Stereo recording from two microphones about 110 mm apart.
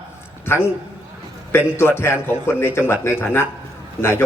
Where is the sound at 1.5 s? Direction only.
20° left (ahead or behind).